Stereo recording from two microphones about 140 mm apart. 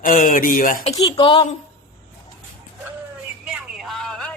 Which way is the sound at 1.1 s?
40° left (ahead or behind).